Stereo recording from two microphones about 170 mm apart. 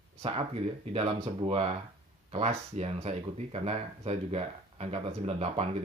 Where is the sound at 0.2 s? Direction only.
35° right (ahead or behind).